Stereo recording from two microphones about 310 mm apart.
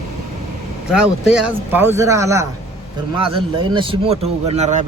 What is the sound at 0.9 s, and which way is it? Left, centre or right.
Speech, centre.